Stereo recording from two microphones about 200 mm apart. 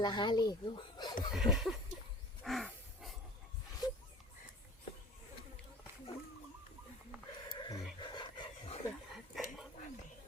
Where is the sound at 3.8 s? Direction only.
20° left (ahead or behind).